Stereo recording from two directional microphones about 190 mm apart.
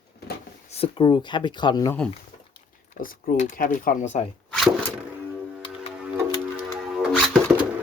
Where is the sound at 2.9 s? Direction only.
45° left (ahead or behind).